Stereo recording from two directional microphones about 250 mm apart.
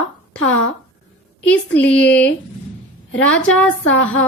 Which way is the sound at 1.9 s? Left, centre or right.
Centre.